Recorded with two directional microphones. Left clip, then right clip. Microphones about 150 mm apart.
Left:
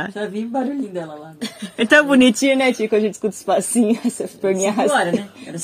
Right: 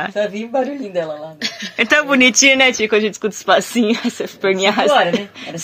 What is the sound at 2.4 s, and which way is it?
Speech, 10° left (ahead or behind).